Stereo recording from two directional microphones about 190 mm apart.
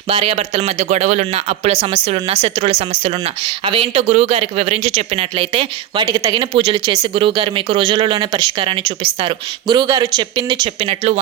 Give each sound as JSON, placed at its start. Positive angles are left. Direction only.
{"t": 0.1, "sound": "speech", "side_deg": -30}
{"t": 6.1, "sound": "speech", "side_deg": -20}